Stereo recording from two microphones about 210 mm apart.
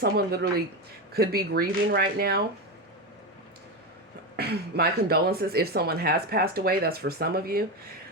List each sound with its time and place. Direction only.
0.0 s speech: 45° right (ahead or behind)
4.4 s speech: 50° right (ahead or behind)